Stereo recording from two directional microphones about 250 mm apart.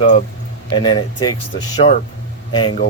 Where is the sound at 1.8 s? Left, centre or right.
Left.